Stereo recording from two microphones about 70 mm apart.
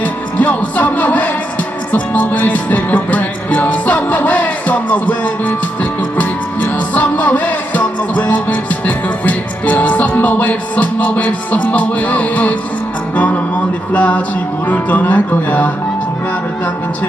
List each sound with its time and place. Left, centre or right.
0.0 s music: left
13.1 s speech: left